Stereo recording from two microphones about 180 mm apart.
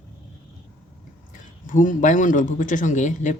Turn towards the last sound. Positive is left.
turn(degrees=45)  # may be behind; listen again after turning